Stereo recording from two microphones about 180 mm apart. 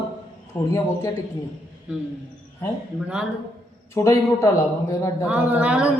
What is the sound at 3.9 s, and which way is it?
Speech, 15° left (ahead or behind).